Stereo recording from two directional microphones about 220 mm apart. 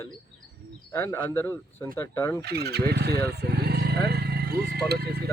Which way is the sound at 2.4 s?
45° right (ahead or behind).